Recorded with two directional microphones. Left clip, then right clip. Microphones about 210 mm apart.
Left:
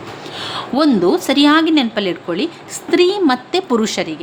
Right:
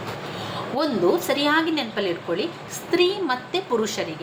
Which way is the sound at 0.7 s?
45° left (ahead or behind).